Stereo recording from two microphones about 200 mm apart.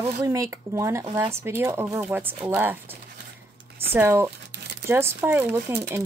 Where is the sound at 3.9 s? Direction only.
10° right (ahead or behind).